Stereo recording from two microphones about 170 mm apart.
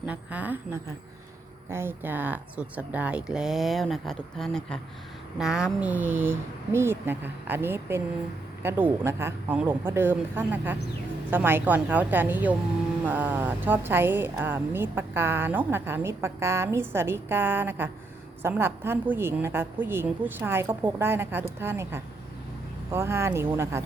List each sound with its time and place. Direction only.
0.0 s speech: 10° right (ahead or behind)